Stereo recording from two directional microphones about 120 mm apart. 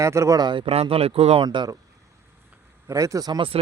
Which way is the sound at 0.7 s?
55° right (ahead or behind).